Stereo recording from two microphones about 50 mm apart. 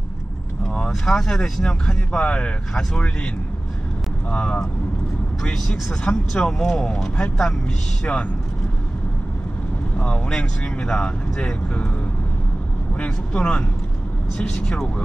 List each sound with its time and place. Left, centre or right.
0.7 s speech: centre
1.9 s speech: left
4.3 s speech: centre
5.4 s speech: centre
5.9 s speech: centre
9.9 s speech: left
13.0 s speech: left